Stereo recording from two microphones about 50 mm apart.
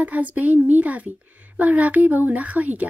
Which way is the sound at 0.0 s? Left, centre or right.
Right.